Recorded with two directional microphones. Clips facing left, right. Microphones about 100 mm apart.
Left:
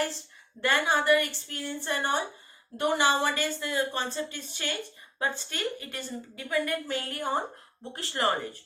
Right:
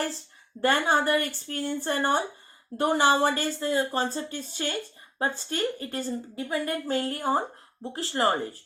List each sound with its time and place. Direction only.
0.6 s speech: 40° right (ahead or behind)